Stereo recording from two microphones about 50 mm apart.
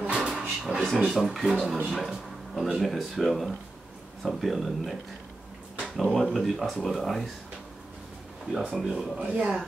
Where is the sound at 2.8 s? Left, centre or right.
Centre.